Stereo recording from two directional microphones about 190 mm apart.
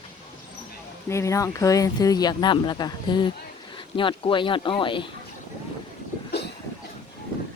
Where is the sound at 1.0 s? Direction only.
15° left (ahead or behind).